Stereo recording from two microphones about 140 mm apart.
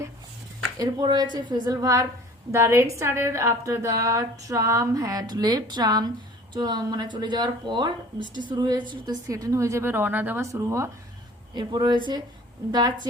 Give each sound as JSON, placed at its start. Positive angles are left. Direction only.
{"t": 0.8, "sound": "speech", "side_deg": -30}
{"t": 11.5, "sound": "speech", "side_deg": -35}